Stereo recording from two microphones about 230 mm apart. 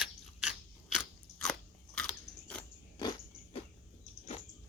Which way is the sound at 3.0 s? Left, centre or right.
Centre.